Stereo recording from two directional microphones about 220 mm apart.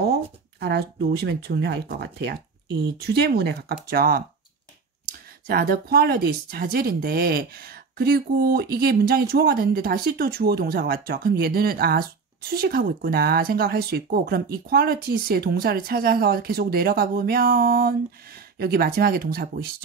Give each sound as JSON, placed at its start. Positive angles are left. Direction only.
{"t": 0.0, "sound": "speech", "side_deg": -45}
{"t": 5.5, "sound": "speech", "side_deg": -45}